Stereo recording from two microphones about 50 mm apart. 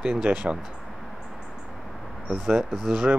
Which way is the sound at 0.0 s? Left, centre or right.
Centre.